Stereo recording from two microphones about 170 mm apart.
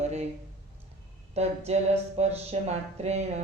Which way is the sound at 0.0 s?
40° right (ahead or behind).